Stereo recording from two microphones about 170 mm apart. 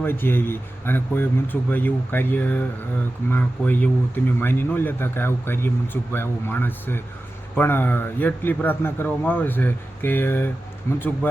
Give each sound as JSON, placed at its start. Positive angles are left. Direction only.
{"t": 0.0, "sound": "speech", "side_deg": 10}